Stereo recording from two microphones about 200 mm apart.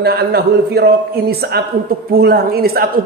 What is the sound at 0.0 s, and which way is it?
A man's voice, 50° right (ahead or behind).